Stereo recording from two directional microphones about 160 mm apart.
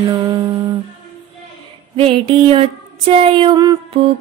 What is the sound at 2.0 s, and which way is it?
Music, 35° right (ahead or behind).